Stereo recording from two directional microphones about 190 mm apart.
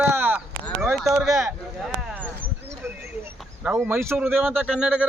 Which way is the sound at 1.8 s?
Centre (ahead or behind).